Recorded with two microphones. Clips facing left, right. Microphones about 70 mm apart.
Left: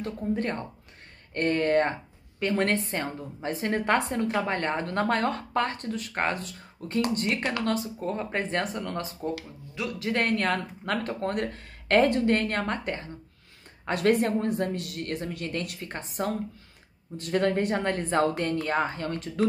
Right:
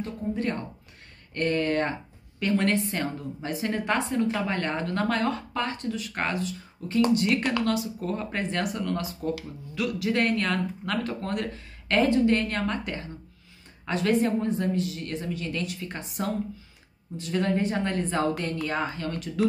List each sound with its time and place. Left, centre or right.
0.0 s a woman's voice: left
7.2 s speech: left
8.1 s a woman's voice: left
17.2 s a woman's voice: left